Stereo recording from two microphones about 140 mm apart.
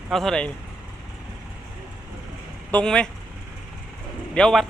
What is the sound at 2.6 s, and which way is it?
Speech, 10° left (ahead or behind).